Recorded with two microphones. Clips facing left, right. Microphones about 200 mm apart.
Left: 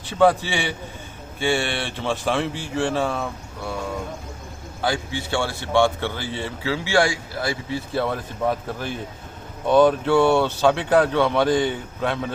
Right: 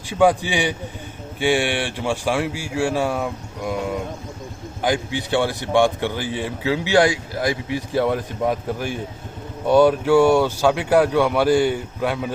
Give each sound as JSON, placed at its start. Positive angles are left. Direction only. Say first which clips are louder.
{"t": 0.1, "sound": "speech", "louder": "right 1 dB", "side_deg": -15}